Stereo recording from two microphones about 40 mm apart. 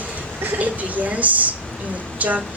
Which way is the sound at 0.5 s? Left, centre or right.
Right.